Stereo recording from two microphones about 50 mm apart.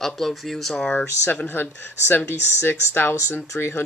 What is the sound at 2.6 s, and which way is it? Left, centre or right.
Speech, left.